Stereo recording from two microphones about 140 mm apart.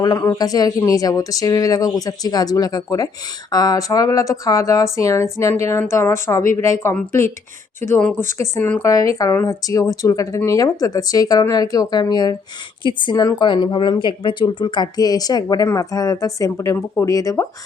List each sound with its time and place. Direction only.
0.0 s a woman's voice: 25° left (ahead or behind)